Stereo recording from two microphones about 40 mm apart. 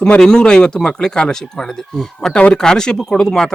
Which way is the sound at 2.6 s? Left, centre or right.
Centre.